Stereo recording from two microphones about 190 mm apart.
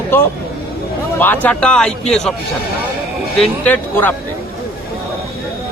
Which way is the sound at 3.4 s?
10° left (ahead or behind).